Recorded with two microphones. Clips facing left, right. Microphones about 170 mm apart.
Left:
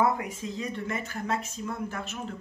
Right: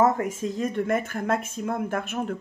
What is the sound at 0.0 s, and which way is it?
Speech, 45° right (ahead or behind).